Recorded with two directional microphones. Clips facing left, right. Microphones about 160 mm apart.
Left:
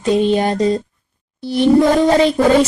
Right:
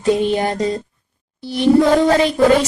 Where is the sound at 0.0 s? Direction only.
20° left (ahead or behind).